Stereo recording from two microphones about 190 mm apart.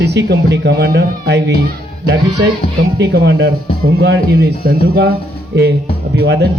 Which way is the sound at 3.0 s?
60° right (ahead or behind).